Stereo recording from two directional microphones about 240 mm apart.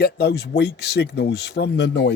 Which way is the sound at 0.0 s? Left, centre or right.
Left.